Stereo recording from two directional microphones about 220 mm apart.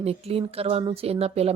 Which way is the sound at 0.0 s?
25° right (ahead or behind).